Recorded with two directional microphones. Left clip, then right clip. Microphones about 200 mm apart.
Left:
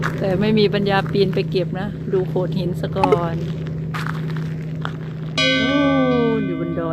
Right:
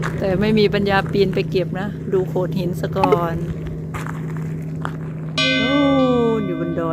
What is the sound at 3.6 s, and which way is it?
Walk, 10° right (ahead or behind).